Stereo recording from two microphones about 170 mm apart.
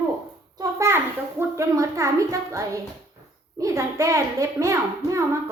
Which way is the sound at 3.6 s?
20° right (ahead or behind).